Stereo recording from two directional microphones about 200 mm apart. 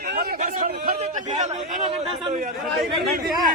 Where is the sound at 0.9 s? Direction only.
35° right (ahead or behind).